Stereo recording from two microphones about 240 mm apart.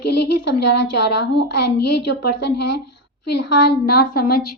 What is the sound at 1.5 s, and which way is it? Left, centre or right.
A woman's voice, left.